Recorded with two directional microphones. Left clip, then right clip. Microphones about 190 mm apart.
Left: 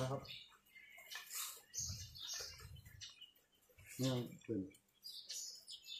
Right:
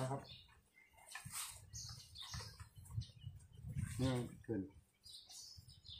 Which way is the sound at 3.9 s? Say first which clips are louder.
Even; 5° right (ahead or behind).